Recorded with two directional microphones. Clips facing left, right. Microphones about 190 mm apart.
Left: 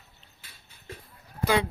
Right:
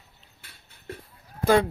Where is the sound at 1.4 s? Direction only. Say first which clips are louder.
Right 5 dB; 50° right (ahead or behind).